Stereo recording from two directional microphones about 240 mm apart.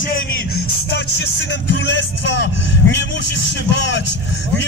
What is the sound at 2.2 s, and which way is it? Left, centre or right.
Speech, left.